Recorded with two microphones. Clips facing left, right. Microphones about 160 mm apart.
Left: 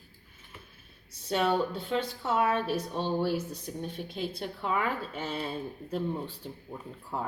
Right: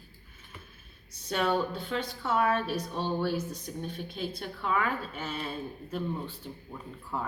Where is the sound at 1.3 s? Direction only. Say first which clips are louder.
Left 1 dB; 25° left (ahead or behind).